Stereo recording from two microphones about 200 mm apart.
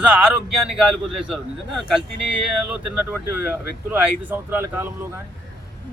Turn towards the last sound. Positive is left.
turn(degrees=-10)  # may be behind; listen again after turning